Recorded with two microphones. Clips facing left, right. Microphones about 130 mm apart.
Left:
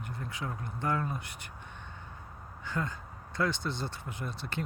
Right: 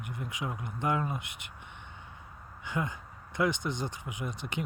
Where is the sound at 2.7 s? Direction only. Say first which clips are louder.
Right 1 dB; 15° right (ahead or behind).